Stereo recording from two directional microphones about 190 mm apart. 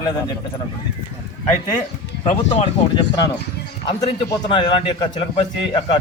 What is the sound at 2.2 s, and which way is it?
Speech, 35° left (ahead or behind).